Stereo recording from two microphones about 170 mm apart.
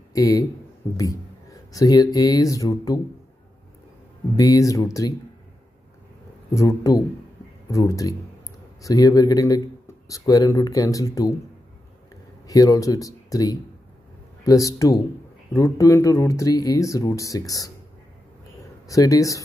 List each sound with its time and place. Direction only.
0.1 s speech: 20° left (ahead or behind)
4.4 s speech: 20° left (ahead or behind)
6.5 s speech: 20° left (ahead or behind)
12.4 s speech: 20° left (ahead or behind)
18.9 s speech: 20° left (ahead or behind)